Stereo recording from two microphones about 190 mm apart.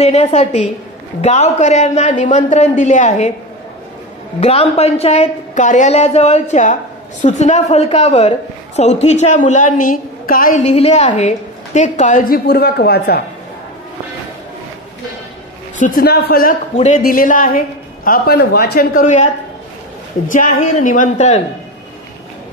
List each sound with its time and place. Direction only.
0.0 s a woman's voice: 35° left (ahead or behind)
4.4 s a woman's voice: 35° left (ahead or behind); by 13.2 s 55° left (ahead or behind)
15.8 s a woman's voice: 50° left (ahead or behind)
16.7 s a woman's voice: 35° left (ahead or behind)
17.0 s a woman's voice: 50° left (ahead or behind)
20.2 s a woman's voice: 45° left (ahead or behind)